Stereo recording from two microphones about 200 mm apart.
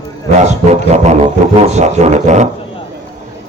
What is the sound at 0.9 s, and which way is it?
A man's voice, 35° right (ahead or behind).